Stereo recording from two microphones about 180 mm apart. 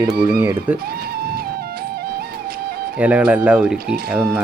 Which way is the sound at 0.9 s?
60° right (ahead or behind).